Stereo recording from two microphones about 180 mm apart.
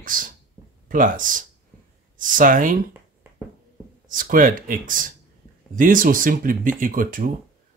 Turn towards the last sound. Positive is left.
turn(degrees=-50)  # may be behind; listen again after turning